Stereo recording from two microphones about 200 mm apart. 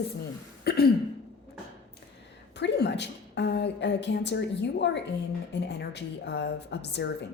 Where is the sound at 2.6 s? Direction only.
60° left (ahead or behind).